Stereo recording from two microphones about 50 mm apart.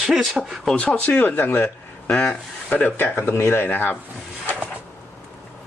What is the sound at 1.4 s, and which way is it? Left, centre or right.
Speech, left.